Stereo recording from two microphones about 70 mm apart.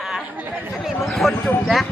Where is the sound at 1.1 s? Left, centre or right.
Centre.